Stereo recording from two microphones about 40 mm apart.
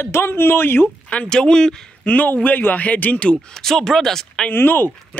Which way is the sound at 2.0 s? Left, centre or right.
Left.